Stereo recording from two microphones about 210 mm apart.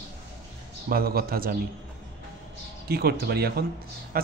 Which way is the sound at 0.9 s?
45° right (ahead or behind).